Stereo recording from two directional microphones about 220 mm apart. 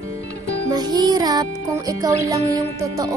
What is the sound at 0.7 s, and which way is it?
A child's voice, 20° right (ahead or behind).